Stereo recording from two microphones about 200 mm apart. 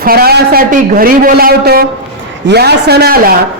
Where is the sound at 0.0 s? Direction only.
50° right (ahead or behind).